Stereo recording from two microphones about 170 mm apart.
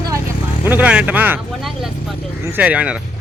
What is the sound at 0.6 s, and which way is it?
Speech, 10° right (ahead or behind).